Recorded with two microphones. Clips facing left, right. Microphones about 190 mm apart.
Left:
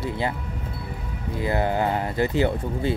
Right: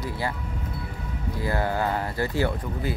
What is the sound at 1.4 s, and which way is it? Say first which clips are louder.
Speech: left 3 dB; 20° left (ahead or behind).